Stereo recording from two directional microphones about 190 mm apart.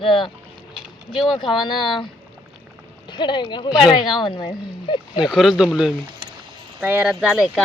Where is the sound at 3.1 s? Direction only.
25° left (ahead or behind).